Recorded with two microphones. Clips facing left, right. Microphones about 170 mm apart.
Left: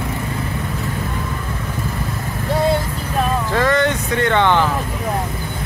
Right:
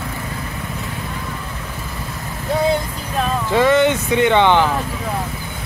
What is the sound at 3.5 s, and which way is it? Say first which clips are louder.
Vehicle: right 6 dB; 20° right (ahead or behind).